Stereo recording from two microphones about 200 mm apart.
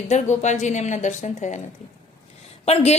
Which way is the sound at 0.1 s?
35° left (ahead or behind).